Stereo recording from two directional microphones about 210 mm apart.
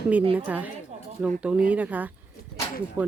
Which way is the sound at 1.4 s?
5° right (ahead or behind).